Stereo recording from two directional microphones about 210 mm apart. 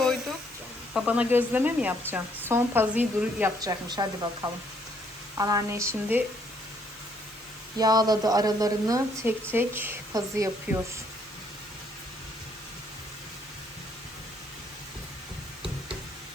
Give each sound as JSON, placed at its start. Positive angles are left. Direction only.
{"t": 0.0, "sound": "a sound", "side_deg": 0}
{"t": 0.9, "sound": "a woman's voice", "side_deg": -5}
{"t": 3.6, "sound": "a woman's voice", "side_deg": -20}
{"t": 5.4, "sound": "a woman's voice", "side_deg": -15}
{"t": 7.8, "sound": "a woman's voice", "side_deg": -20}